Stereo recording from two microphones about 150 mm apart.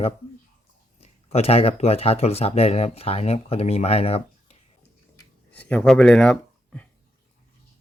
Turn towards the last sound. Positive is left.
turn(degrees=5)  # may be behind; listen again after turning